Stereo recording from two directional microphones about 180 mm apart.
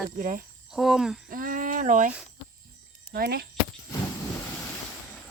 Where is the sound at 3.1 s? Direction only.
55° right (ahead or behind).